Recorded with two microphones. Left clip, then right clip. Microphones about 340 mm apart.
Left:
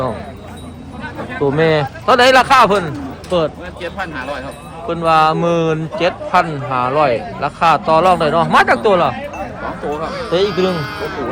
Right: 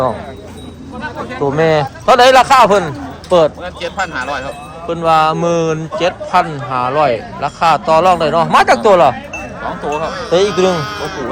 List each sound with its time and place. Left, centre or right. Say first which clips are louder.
1.3 s a man's voice: right 1 dB; centre
4.9 s a man's voice: right 1 dB; centre
10.2 s speech: right 4 dB; centre